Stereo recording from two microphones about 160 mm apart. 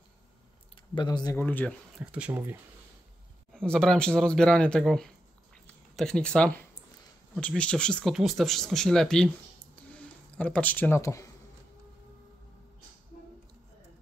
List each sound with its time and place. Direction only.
0.9 s speech: 25° left (ahead or behind)
1.3 s speech: 10° left (ahead or behind)
2.0 s speech: 5° right (ahead or behind)
3.5 s speech: 5° left (ahead or behind)
9.8 s a sound: 10° left (ahead or behind)